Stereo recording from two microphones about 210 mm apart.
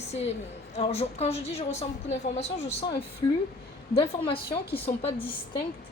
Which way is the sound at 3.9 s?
20° left (ahead or behind).